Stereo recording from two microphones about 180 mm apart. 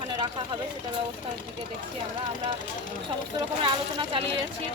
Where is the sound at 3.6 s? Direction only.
30° right (ahead or behind).